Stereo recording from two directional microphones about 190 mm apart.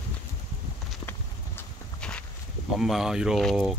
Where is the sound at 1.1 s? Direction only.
10° left (ahead or behind).